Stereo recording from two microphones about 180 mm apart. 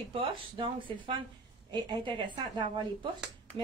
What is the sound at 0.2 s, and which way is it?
A woman's voice, 30° right (ahead or behind).